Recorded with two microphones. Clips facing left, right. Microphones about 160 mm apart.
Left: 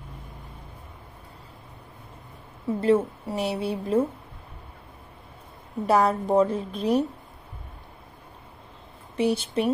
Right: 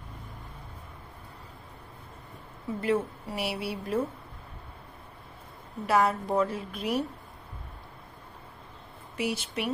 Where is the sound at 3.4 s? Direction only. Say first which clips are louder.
Left 5 dB; 10° right (ahead or behind).